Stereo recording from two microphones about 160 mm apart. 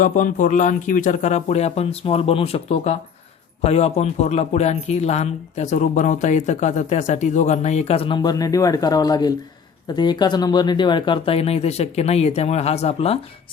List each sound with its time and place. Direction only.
0.0 s speech: 55° left (ahead or behind); by 13.1 s 40° left (ahead or behind)